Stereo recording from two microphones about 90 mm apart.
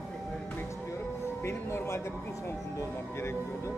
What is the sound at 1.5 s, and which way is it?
Speech, 30° left (ahead or behind).